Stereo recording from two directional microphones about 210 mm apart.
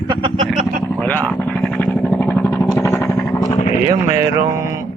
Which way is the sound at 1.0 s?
5° left (ahead or behind).